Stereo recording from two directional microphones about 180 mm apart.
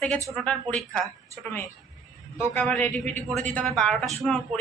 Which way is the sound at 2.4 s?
10° left (ahead or behind).